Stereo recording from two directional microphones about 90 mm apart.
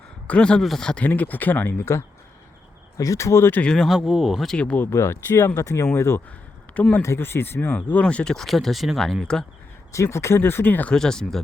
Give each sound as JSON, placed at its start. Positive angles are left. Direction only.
{"t": 0.3, "sound": "speech", "side_deg": 10}
{"t": 3.6, "sound": "speech", "side_deg": 10}
{"t": 3.8, "sound": "speech", "side_deg": -5}
{"t": 4.5, "sound": "speech", "side_deg": 15}
{"t": 4.9, "sound": "speech", "side_deg": 30}
{"t": 9.9, "sound": "speech", "side_deg": 30}
{"t": 10.9, "sound": "speech", "side_deg": 5}